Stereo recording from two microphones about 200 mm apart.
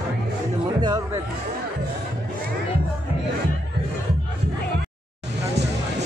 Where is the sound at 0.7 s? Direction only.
20° right (ahead or behind).